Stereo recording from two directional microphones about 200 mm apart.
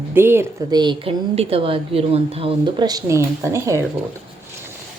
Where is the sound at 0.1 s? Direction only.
10° right (ahead or behind).